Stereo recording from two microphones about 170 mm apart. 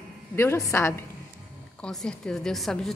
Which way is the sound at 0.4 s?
15° left (ahead or behind).